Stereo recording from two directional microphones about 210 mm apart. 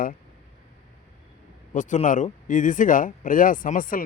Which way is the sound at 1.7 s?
35° left (ahead or behind).